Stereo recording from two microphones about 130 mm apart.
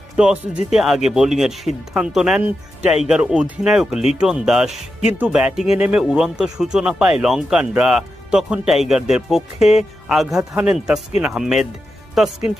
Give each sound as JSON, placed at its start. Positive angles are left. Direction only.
{"t": 0.2, "sound": "speech", "side_deg": -5}